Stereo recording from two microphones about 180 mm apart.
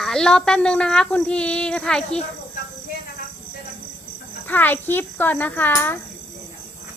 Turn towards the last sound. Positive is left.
turn(degrees=10)  # may be behind; listen again after turning